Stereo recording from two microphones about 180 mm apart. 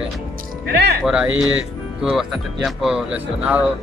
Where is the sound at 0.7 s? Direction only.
60° right (ahead or behind).